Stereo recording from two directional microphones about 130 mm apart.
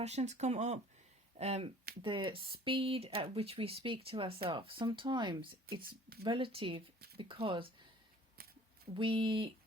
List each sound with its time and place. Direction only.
0.0 s speech: 60° right (ahead or behind)
1.4 s speech: 50° right (ahead or behind)
9.0 s speech: 40° right (ahead or behind)